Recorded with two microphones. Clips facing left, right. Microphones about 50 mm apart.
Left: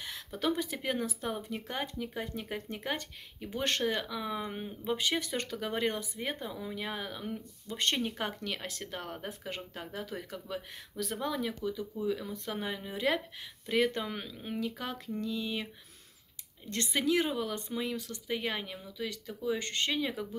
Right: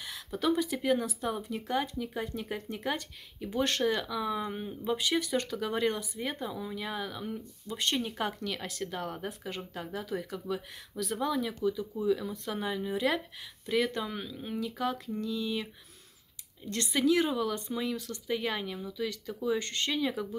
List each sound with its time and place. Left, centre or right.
0.0 s speech: left
7.7 s speech: left
8.2 s speech: left
18.2 s speech: centre
19.6 s speech: left